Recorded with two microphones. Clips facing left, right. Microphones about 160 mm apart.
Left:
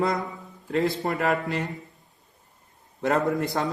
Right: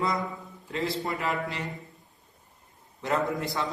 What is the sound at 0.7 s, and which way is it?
Speech, 55° left (ahead or behind).